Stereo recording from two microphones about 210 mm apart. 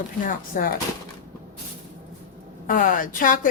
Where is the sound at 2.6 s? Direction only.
40° left (ahead or behind).